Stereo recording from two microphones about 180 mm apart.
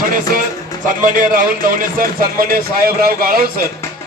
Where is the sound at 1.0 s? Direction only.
50° right (ahead or behind).